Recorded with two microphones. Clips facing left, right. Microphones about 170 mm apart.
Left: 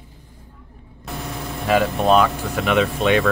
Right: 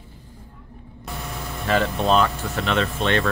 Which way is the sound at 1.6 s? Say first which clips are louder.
Left 3 dB; 10° left (ahead or behind).